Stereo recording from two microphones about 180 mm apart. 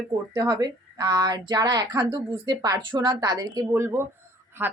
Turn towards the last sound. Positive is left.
turn(degrees=-10)  # may be behind; listen again after turning